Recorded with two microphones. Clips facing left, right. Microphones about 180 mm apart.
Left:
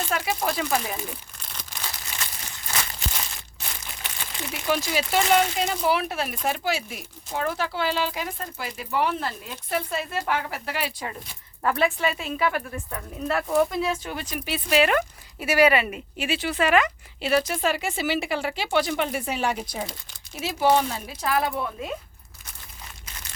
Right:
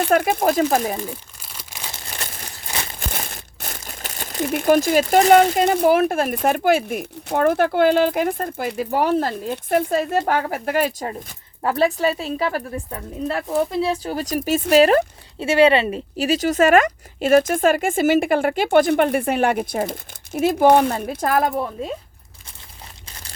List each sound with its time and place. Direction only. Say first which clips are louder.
0.0 s speech: right 9 dB; 55° right (ahead or behind)
3.0 s speech: right 4 dB; 50° right (ahead or behind)
11.6 s a woman's voice: right 5 dB; 35° right (ahead or behind)
23.0 s crumpling: right 1 dB; 35° right (ahead or behind)